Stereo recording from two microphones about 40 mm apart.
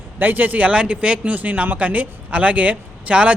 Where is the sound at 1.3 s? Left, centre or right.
Right.